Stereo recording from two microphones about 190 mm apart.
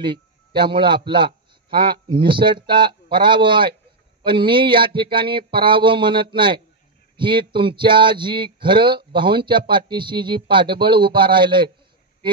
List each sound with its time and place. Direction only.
0.0 s a man's voice: 25° right (ahead or behind)